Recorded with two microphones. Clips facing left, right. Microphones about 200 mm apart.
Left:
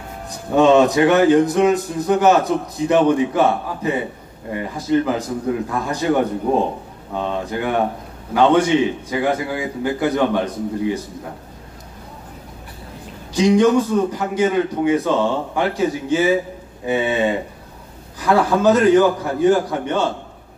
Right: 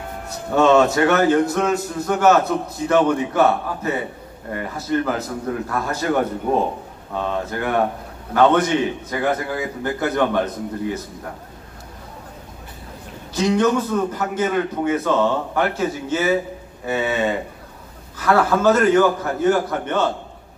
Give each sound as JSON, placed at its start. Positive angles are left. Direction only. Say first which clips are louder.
{"t": 0.6, "sound": "a man's voice", "louder": "left 2 dB", "side_deg": 15}
{"t": 13.3, "sound": "a man's voice", "louder": "left 4 dB", "side_deg": 15}